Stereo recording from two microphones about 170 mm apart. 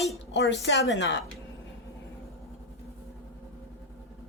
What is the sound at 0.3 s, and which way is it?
Speech, 90° left.